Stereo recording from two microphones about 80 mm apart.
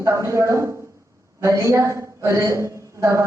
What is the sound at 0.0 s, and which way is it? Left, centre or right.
A man's voice, right.